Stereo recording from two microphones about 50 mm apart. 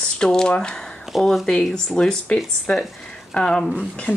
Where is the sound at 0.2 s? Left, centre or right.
Centre.